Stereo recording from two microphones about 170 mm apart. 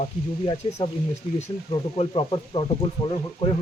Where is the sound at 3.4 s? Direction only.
40° left (ahead or behind).